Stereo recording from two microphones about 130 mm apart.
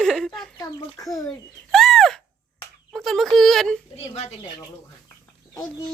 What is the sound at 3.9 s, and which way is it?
Speech, 50° left (ahead or behind).